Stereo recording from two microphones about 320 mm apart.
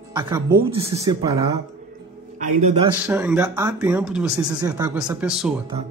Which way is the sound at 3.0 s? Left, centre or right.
Centre.